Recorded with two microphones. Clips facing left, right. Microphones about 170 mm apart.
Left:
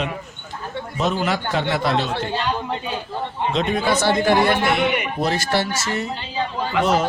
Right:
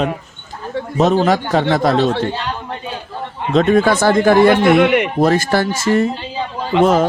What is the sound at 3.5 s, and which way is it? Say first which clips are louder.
Speech: right 9 dB; 50° right (ahead or behind).